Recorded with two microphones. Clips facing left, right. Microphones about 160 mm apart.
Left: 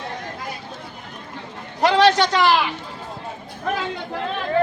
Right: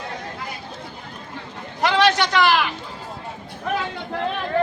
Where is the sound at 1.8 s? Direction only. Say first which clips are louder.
Left 3 dB; 35° left (ahead or behind).